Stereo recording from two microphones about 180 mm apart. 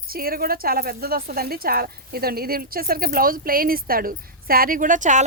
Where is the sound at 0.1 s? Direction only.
55° right (ahead or behind).